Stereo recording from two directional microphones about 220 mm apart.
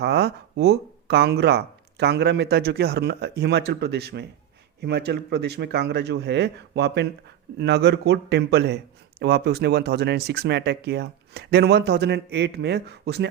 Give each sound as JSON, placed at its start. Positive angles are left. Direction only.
{"t": 0.0, "sound": "a man's voice", "side_deg": -50}